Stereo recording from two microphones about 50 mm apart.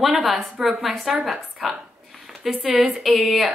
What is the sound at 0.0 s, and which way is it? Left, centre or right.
A woman's voice, centre.